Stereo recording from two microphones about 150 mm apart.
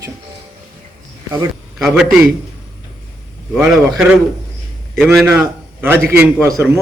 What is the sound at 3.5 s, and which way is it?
Speech, centre (ahead or behind).